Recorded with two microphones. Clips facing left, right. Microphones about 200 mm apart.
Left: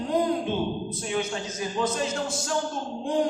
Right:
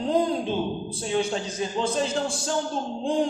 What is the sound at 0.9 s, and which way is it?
A man's voice, 30° right (ahead or behind).